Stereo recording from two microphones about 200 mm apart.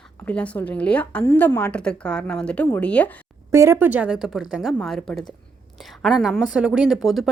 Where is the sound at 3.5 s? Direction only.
15° right (ahead or behind).